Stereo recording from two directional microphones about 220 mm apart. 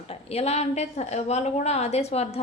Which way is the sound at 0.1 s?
30° left (ahead or behind).